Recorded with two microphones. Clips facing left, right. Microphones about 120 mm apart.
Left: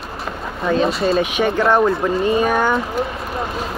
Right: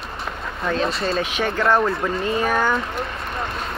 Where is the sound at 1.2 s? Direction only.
15° left (ahead or behind).